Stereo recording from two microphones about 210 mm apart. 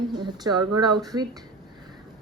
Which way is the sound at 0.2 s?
20° right (ahead or behind).